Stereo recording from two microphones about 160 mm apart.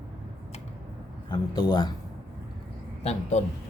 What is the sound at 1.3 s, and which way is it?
Speech, 25° left (ahead or behind).